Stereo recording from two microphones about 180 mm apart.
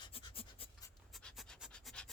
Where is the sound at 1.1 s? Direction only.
Centre (ahead or behind).